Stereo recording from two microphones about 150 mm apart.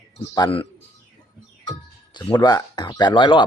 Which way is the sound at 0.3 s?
35° left (ahead or behind).